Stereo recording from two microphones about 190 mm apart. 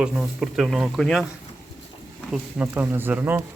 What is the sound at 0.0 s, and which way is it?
Speech, 5° right (ahead or behind).